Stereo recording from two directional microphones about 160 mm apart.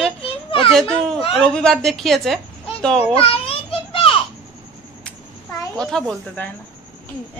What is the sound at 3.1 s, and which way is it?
Children playing, 35° left (ahead or behind).